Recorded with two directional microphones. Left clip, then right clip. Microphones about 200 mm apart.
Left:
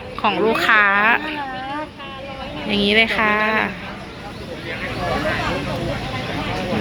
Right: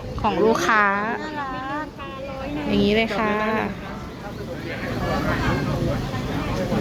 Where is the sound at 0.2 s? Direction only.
10° right (ahead or behind).